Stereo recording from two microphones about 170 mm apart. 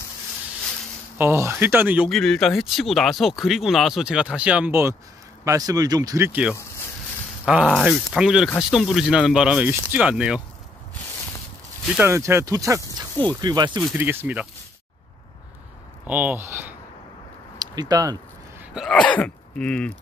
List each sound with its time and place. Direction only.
1.1 s speech: 15° right (ahead or behind)
2.0 s speech: centre (ahead or behind)
11.9 s speech: 15° right (ahead or behind)
13.7 s speech: 10° right (ahead or behind)
16.1 s speech: 10° right (ahead or behind)
17.6 s speech: 25° right (ahead or behind)
18.7 s speech: centre (ahead or behind)